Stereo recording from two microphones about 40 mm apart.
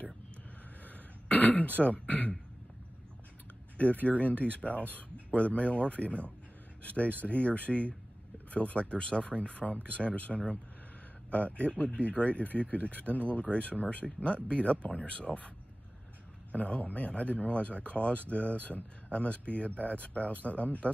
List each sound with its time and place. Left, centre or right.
0.8 s throat clearing: left
3.7 s speech: left
16.5 s speech: left